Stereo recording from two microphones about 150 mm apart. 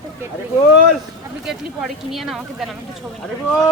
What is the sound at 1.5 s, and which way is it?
Speech, centre (ahead or behind).